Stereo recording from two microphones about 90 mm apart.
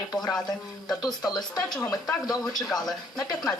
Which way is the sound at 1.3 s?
50° left (ahead or behind).